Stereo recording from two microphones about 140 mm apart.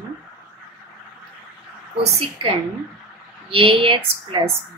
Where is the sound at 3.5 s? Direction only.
40° right (ahead or behind).